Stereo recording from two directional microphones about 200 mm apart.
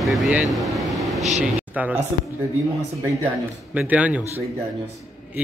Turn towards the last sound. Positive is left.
turn(degrees=-5)  # may be behind; listen again after turning